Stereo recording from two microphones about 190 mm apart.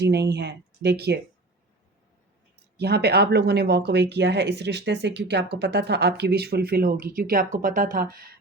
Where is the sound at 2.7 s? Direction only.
60° right (ahead or behind).